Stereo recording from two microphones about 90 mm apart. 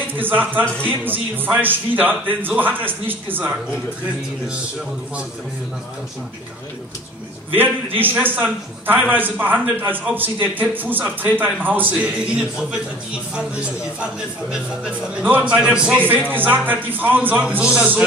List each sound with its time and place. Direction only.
0.1 s a man's voice: 20° right (ahead or behind)
7.5 s a man's voice: 20° right (ahead or behind)